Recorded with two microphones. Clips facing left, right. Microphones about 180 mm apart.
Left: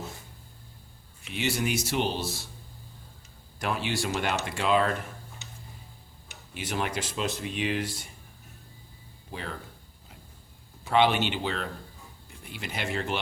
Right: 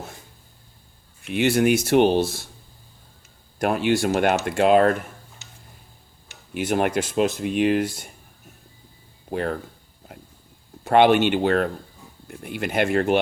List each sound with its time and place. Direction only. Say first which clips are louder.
1.3 s speech: right 10 dB; 55° right (ahead or behind)
3.6 s speech: right 10 dB; 55° right (ahead or behind)
6.5 s speech: right 10 dB; 55° right (ahead or behind)
9.3 s speech: right 12 dB; 55° right (ahead or behind)
10.8 s speech: right 8 dB; 55° right (ahead or behind)